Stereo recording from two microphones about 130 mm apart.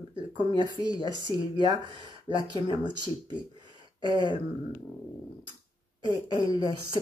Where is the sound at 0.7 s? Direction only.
30° left (ahead or behind).